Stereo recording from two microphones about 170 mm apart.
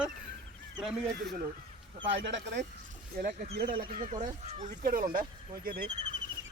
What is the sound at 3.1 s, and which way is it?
Speech, 60° right (ahead or behind).